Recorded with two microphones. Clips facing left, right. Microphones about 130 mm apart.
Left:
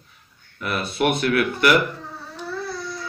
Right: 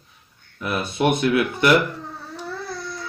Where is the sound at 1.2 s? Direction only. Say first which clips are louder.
Right 1 dB; 20° right (ahead or behind).